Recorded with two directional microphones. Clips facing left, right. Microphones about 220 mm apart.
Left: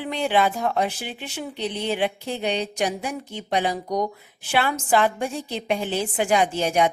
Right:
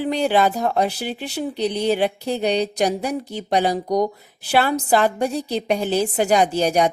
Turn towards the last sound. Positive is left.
turn(degrees=-40)  # may be behind; listen again after turning